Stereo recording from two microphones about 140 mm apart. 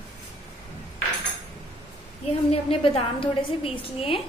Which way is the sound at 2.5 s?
40° left (ahead or behind).